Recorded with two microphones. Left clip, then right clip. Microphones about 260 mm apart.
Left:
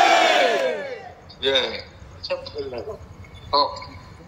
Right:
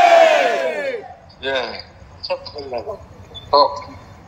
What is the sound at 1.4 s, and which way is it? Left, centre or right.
A man's voice, centre.